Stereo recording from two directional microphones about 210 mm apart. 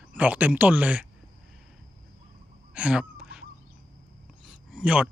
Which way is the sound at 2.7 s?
5° right (ahead or behind).